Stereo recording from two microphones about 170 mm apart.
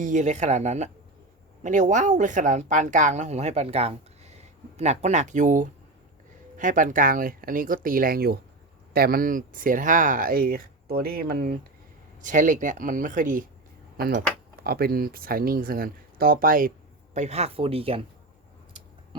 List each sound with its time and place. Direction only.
0.0 s speech: 45° right (ahead or behind); by 11.5 s 60° right (ahead or behind)
12.2 s speech: 50° right (ahead or behind)
13.9 s speech: 60° right (ahead or behind)
17.2 s speech: 40° right (ahead or behind)